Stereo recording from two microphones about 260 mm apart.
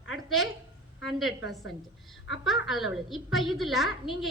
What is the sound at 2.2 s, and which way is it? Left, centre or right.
Speech, left.